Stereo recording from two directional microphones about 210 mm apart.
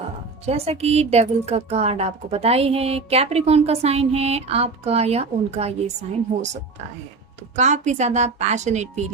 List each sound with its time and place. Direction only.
0.4 s a woman's voice: 30° right (ahead or behind)